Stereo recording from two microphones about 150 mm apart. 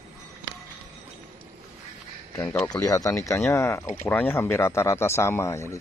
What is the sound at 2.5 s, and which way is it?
Speech, 5° left (ahead or behind).